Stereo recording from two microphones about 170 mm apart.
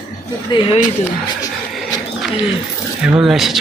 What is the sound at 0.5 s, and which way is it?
Speech, 30° left (ahead or behind).